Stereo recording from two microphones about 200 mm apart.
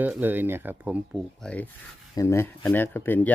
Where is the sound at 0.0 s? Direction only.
10° right (ahead or behind).